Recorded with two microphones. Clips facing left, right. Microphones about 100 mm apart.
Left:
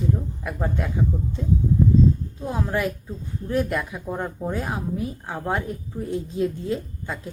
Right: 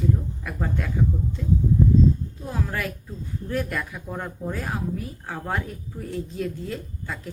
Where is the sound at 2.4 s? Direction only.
20° left (ahead or behind).